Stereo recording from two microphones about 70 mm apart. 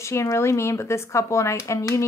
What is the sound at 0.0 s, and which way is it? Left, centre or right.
Speech, left.